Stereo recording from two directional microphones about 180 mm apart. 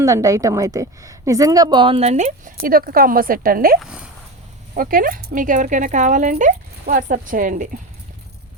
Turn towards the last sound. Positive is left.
turn(degrees=-50)  # may be behind; listen again after turning